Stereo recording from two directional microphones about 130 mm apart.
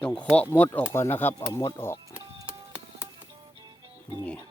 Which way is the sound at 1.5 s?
30° left (ahead or behind).